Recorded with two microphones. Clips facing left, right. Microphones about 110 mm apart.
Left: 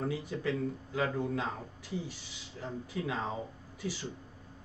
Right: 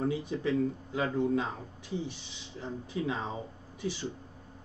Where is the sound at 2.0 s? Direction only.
20° right (ahead or behind).